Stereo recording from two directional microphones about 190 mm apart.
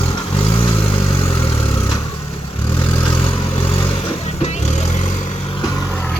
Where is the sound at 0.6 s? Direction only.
30° left (ahead or behind).